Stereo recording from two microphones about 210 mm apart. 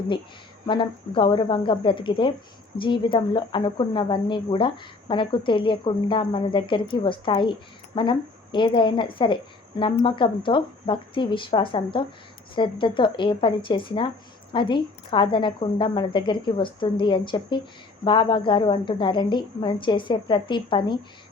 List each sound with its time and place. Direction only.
0.7 s a woman's voice: 20° left (ahead or behind)